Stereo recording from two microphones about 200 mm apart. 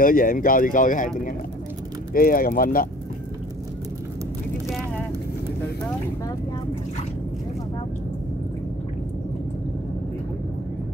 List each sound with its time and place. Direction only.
0.0 s speech: 45° left (ahead or behind)